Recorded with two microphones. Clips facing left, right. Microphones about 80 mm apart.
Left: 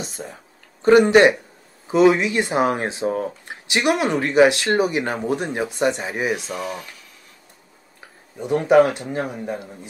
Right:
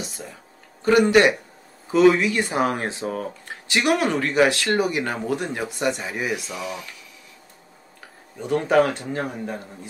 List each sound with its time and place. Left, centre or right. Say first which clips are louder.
0.0 s speech: left 3 dB; left
6.5 s speech: left 3 dB; left
8.4 s a man's voice: left 4 dB; centre